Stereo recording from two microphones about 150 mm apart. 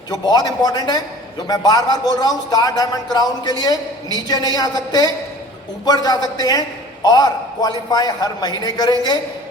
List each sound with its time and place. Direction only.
0.1 s speech: 25° left (ahead or behind)